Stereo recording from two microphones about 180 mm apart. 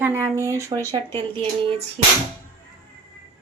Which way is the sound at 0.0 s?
15° right (ahead or behind).